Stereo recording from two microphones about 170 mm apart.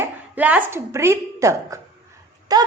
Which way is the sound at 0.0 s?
10° right (ahead or behind).